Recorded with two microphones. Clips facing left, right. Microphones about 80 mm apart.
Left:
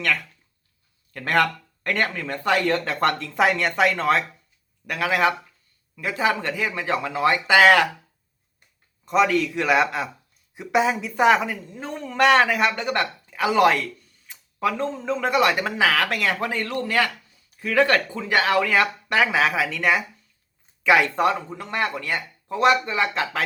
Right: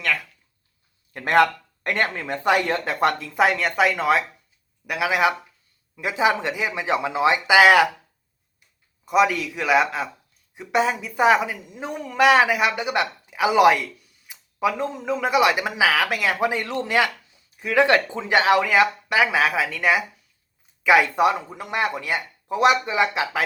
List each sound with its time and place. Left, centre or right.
0.0 s speech: centre
1.1 s speech: centre
9.0 s a woman's voice: centre
12.0 s speech: centre
19.0 s a woman's voice: centre